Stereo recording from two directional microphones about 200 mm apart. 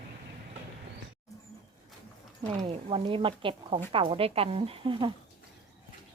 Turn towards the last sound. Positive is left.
turn(degrees=-25)  # may be behind; listen again after turning